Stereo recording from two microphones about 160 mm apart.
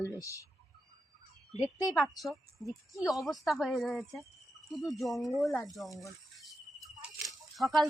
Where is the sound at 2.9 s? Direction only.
20° left (ahead or behind).